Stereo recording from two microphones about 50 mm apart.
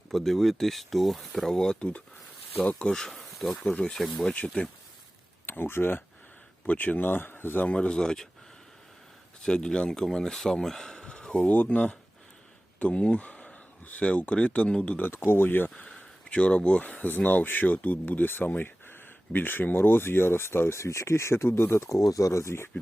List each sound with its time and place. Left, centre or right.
0.1 s speech: centre
2.6 s speech: left
3.2 s insect: centre
3.5 s speech: left
3.8 s speech: centre
5.5 s speech: left
6.7 s speech: left
7.6 s speech: left
9.4 s speech: centre
11.4 s speech: left
15.3 s speech: left
16.0 s speech: left
21.8 s speech: left